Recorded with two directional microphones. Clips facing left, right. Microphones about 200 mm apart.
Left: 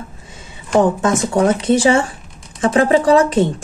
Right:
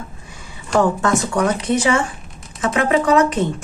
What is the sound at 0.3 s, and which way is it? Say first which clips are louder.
Speech: left 3 dB; 20° left (ahead or behind).